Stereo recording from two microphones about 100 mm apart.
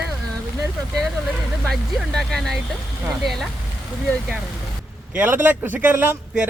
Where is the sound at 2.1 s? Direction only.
5° left (ahead or behind).